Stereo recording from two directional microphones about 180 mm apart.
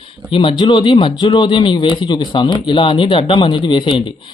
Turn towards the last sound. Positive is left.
turn(degrees=25)  # may be behind; listen again after turning